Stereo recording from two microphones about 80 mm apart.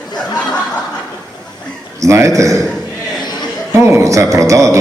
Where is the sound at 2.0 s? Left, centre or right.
Right.